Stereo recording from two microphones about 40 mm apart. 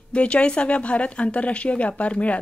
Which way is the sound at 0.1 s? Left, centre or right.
Left.